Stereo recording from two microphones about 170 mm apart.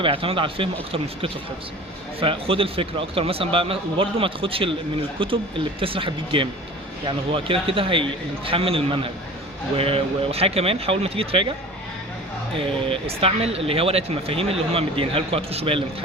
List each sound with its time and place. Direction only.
0.0 s speech: 30° right (ahead or behind)
12.5 s speech: 30° right (ahead or behind)